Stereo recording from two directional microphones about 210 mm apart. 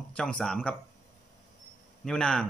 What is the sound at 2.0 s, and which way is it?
Speech, 5° left (ahead or behind).